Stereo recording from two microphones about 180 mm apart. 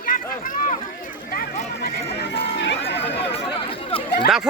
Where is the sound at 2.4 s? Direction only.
70° left (ahead or behind).